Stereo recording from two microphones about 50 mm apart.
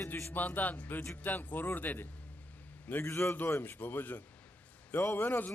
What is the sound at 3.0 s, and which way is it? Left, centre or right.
Speech, left.